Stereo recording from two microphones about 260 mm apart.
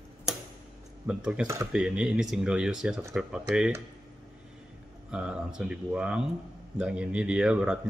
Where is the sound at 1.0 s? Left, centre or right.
Centre.